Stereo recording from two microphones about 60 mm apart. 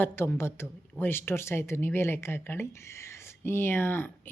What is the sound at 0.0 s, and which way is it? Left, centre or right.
Speech, left.